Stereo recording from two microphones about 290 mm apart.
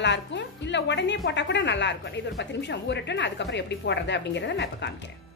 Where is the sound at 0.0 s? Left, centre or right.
Left.